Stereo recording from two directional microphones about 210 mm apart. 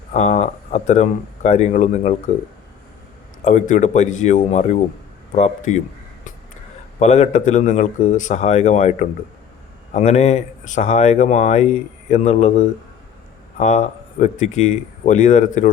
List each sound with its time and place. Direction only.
0.1 s speech: 35° left (ahead or behind)
3.4 s speech: 35° left (ahead or behind)
7.0 s speech: 30° left (ahead or behind)